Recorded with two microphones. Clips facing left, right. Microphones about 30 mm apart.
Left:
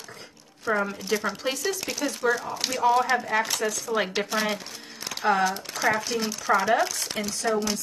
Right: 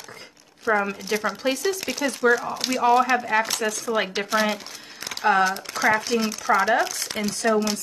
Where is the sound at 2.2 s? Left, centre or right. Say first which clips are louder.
Right 6 dB; right.